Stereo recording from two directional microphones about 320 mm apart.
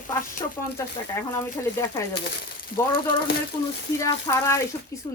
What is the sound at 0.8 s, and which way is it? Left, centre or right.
A woman's voice, centre.